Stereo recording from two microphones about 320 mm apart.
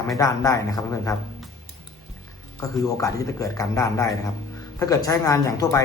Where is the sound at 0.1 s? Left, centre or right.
Centre.